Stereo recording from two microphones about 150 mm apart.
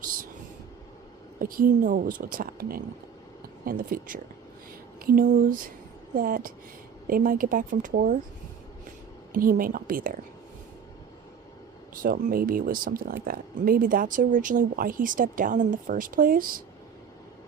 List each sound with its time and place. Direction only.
0.0 s vehicle: 70° right (ahead or behind)
1.4 s a woman's voice: 70° right (ahead or behind)
9.3 s speech: 70° right (ahead or behind)
11.9 s speech: 70° right (ahead or behind)